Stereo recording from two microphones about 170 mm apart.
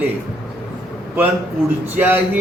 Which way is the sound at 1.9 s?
10° right (ahead or behind).